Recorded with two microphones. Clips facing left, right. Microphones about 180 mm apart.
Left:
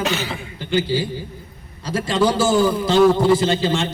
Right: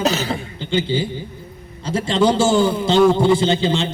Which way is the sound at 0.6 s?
25° right (ahead or behind).